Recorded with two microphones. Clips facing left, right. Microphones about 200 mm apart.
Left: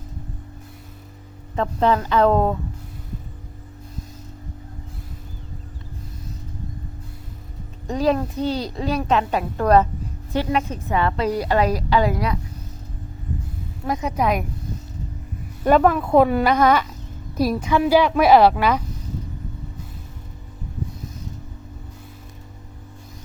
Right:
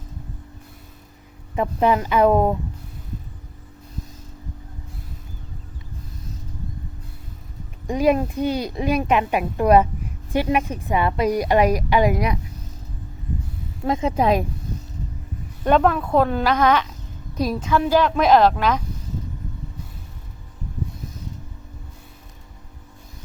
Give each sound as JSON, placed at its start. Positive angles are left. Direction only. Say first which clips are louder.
{"t": 1.5, "sound": "a woman's voice", "louder": "even", "side_deg": -15}
{"t": 7.9, "sound": "a woman's voice", "louder": "right 2 dB", "side_deg": -15}
{"t": 13.8, "sound": "a woman's voice", "louder": "right 3 dB", "side_deg": -25}
{"t": 15.6, "sound": "speech", "louder": "left 2 dB", "side_deg": 5}